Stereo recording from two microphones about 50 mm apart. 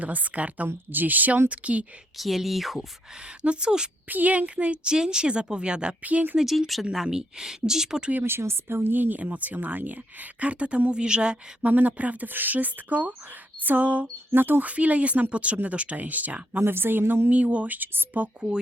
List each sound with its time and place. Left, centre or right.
0.0 s speech: right
2.1 s speech: centre
3.4 s a woman's voice: centre
4.1 s speech: right
6.4 s a woman's voice: centre
8.2 s speech: right
10.9 s speech: centre
11.6 s speech: right
14.3 s a woman's voice: right
14.6 s speech: right
16.6 s a woman's voice: right
17.2 s speech: right